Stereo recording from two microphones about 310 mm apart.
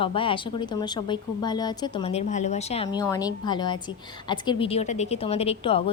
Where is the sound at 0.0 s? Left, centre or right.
Centre.